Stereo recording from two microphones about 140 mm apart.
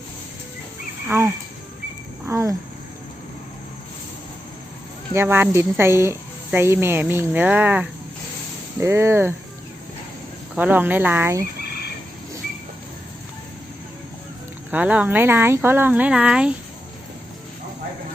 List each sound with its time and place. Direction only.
1.0 s speech: 15° right (ahead or behind)
2.2 s a sound: 20° right (ahead or behind)
5.1 s speech: 15° right (ahead or behind)
10.5 s speech: 10° right (ahead or behind)
14.7 s speech: 10° right (ahead or behind)